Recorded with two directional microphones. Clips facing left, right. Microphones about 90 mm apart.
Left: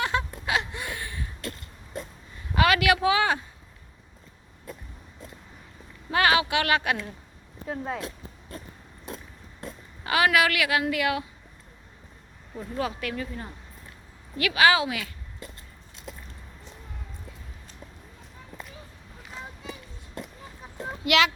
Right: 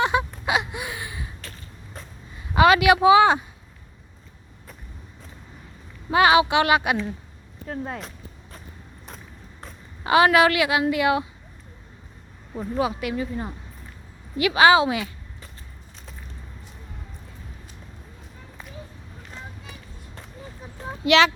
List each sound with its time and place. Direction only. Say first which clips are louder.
0.0 s a sound: right 5 dB; 15° right (ahead or behind)
2.6 s speech: right 6 dB; 20° right (ahead or behind)
6.1 s a woman's voice: right 6 dB; 20° right (ahead or behind)
7.7 s speech: even; centre (ahead or behind)
10.0 s a woman's voice: right 6 dB; 25° right (ahead or behind)
12.7 s a woman's voice: right 5 dB; 15° right (ahead or behind)
21.1 s a child's voice: right 5 dB; 30° right (ahead or behind)